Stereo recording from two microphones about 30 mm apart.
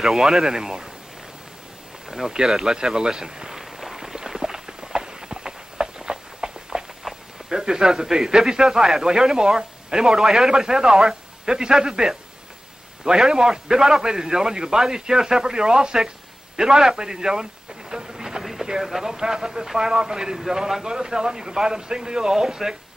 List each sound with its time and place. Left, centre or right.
0.0 s speech: centre
0.5 s a man's voice: right
2.0 s insect: centre
2.3 s a man's voice: centre
3.5 s run: centre
7.0 s a sound: centre
7.4 s a man's voice: right
8.6 s a man's voice: centre
10.5 s a man's voice: right
13.3 s a man's voice: right
16.5 s a sound: centre
18.4 s a sound: centre
18.8 s speech: centre
19.1 s a man's voice: right